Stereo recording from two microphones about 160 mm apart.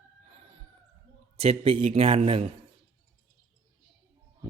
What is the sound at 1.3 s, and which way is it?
A man's voice, 40° right (ahead or behind).